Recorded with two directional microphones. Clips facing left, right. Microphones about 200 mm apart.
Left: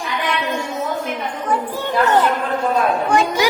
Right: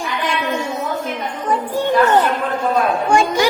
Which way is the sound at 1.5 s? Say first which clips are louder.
Right 5 dB; 15° right (ahead or behind).